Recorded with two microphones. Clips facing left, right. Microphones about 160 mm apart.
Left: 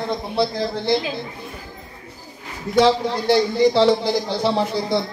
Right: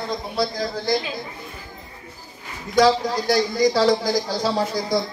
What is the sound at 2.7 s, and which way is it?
A man's voice, 25° left (ahead or behind).